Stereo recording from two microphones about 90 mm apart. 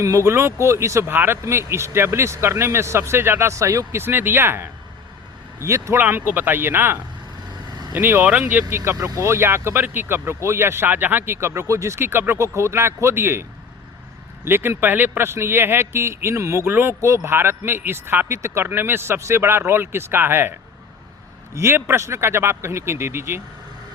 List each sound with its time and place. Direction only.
0.0 s speech: 35° right (ahead or behind)
6.0 s speech: 20° right (ahead or behind)
14.4 s speech: 25° right (ahead or behind)